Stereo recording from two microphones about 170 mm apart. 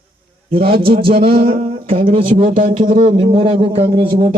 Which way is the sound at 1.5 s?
50° right (ahead or behind).